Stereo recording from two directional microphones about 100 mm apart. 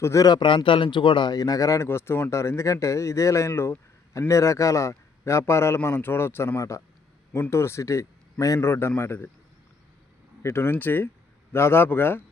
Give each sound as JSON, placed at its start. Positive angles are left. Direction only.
{"t": 0.0, "sound": "a man's voice", "side_deg": 30}
{"t": 0.3, "sound": "a man's voice", "side_deg": 50}
{"t": 10.4, "sound": "a man's voice", "side_deg": 25}